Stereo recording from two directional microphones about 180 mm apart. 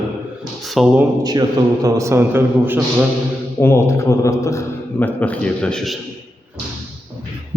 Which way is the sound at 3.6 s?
15° left (ahead or behind).